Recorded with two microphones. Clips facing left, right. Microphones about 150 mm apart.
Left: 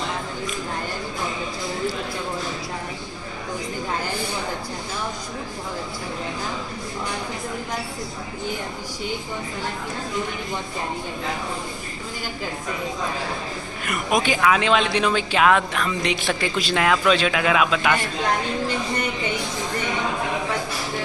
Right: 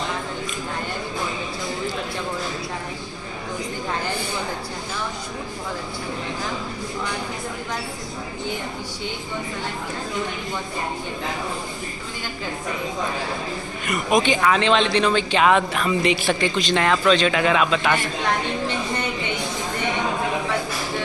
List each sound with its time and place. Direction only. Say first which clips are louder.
13.8 s speech: right 2 dB; 5° left (ahead or behind)